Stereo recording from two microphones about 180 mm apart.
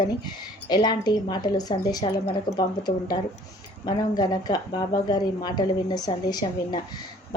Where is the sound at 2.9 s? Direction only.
40° left (ahead or behind).